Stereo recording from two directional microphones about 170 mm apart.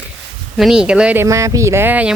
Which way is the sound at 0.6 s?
5° right (ahead or behind).